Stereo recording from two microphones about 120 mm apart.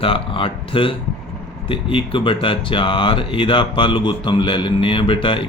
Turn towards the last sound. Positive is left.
turn(degrees=45)  # may be behind; listen again after turning